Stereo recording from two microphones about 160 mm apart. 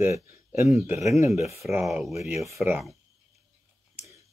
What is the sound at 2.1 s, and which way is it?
Speech, 20° right (ahead or behind).